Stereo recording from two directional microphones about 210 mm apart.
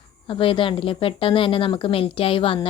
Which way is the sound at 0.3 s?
25° left (ahead or behind).